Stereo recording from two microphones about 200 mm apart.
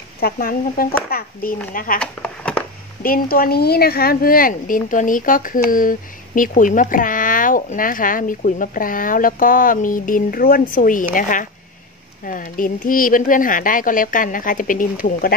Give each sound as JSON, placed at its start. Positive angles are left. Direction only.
{"t": 0.2, "sound": "speech", "side_deg": 45}
{"t": 2.0, "sound": "a sound", "side_deg": 5}
{"t": 3.0, "sound": "speech", "side_deg": 45}